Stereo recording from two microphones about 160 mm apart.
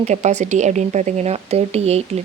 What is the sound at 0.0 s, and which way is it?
Speech, 45° right (ahead or behind).